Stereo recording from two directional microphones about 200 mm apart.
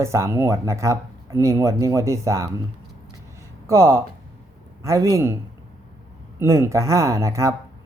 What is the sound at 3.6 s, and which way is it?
Speech, 15° right (ahead or behind).